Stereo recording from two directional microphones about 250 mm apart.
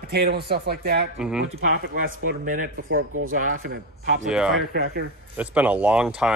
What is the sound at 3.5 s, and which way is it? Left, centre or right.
Speech, right.